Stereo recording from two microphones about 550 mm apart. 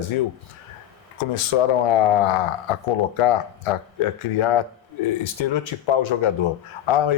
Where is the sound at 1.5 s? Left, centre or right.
Left.